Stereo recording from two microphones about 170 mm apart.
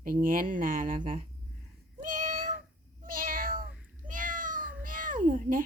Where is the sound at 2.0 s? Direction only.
55° right (ahead or behind).